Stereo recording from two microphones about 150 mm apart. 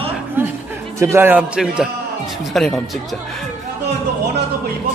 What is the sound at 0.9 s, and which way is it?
A man's voice, 15° right (ahead or behind).